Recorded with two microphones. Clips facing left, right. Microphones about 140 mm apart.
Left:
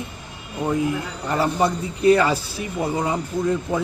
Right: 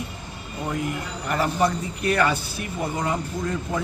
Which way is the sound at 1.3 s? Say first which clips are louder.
Left 2 dB; 25° left (ahead or behind).